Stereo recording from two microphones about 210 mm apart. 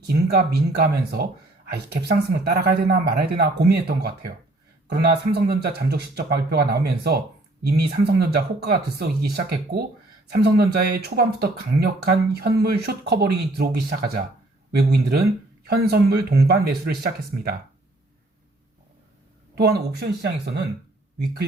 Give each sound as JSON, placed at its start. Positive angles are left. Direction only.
{"t": 0.0, "sound": "speech", "side_deg": -50}
{"t": 1.7, "sound": "speech", "side_deg": -50}
{"t": 19.5, "sound": "speech", "side_deg": -50}